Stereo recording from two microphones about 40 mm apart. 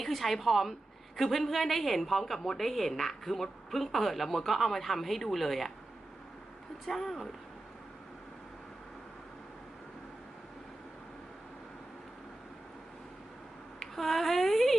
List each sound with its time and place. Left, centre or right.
0.0 s a woman's voice: centre
6.8 s speech: centre
13.7 s speech: centre